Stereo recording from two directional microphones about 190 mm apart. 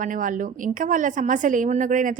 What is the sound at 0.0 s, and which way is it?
A woman's voice, 45° right (ahead or behind).